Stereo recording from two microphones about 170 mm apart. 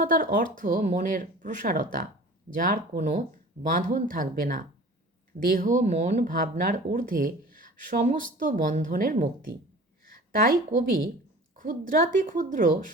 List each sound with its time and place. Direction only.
0.0 s speech: 55° right (ahead or behind)